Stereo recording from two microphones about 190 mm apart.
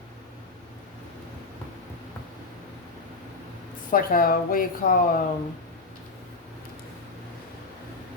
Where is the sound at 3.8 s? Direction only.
50° left (ahead or behind).